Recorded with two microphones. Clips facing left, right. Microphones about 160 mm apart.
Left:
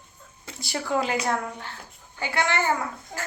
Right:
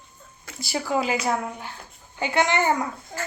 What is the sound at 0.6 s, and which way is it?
Speech, 5° right (ahead or behind).